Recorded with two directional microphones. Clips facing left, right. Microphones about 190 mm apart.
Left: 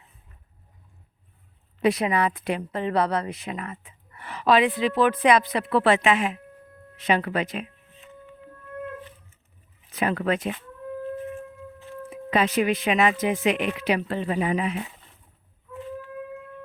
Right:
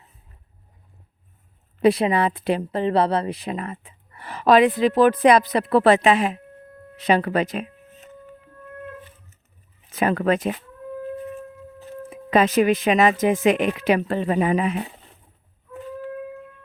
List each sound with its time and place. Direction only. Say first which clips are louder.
1.8 s a woman's voice: right 4 dB; 30° right (ahead or behind)
6.9 s music: right 4 dB; 35° right (ahead or behind)
9.9 s speech: right 4 dB; 45° right (ahead or behind)
11.8 s speech: right 2 dB; 45° right (ahead or behind)